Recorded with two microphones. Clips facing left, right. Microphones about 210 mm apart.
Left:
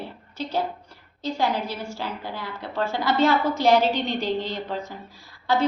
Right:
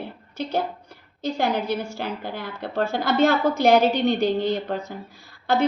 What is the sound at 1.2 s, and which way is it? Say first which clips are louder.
A woman's voice: right 2 dB; 60° right (ahead or behind).